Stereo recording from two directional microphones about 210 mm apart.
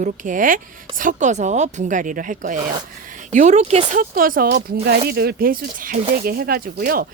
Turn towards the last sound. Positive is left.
turn(degrees=-45)  # may be behind; listen again after turning